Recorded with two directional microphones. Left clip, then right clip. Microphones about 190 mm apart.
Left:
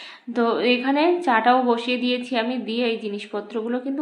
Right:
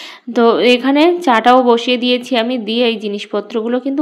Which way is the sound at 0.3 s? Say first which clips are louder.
Right 10 dB; 40° right (ahead or behind).